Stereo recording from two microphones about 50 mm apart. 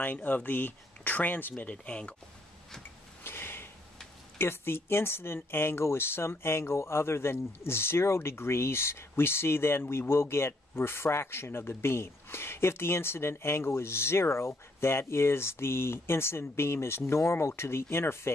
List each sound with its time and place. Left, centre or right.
0.0 s speech: left
1.9 s speech: left
3.3 s a sound: left
4.4 s speech: left